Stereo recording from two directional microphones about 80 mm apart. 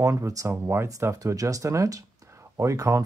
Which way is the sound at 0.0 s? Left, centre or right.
Right.